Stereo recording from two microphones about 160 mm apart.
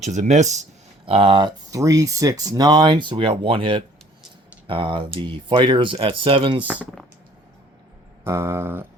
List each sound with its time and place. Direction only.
0.0 s speech: 45° right (ahead or behind)
1.0 s speech: 30° right (ahead or behind)
8.2 s a sound: 15° right (ahead or behind)